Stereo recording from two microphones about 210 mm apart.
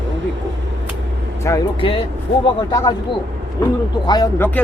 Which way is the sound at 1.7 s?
25° left (ahead or behind).